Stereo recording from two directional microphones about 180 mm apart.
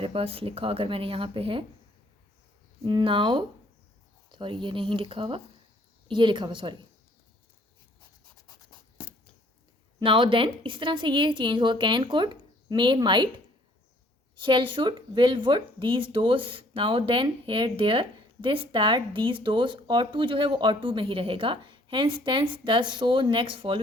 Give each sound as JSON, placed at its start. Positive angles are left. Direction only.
{"t": 0.0, "sound": "speech", "side_deg": -30}
{"t": 2.8, "sound": "speech", "side_deg": -30}
{"t": 10.0, "sound": "speech", "side_deg": -30}
{"t": 14.3, "sound": "speech", "side_deg": -25}